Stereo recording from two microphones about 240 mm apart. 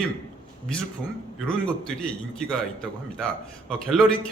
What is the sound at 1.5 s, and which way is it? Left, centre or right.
A man's voice, centre.